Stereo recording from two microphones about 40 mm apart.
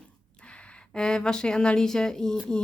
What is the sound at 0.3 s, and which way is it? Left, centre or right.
Speech, left.